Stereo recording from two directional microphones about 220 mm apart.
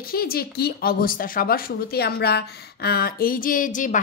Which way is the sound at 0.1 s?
45° left (ahead or behind).